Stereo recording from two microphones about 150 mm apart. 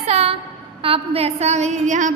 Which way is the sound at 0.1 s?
45° right (ahead or behind).